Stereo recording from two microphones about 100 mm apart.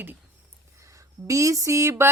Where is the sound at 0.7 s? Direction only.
30° right (ahead or behind).